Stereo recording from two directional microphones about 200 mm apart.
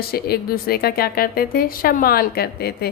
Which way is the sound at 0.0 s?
50° left (ahead or behind).